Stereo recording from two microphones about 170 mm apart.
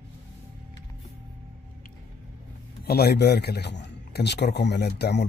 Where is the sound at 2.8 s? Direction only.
70° left (ahead or behind).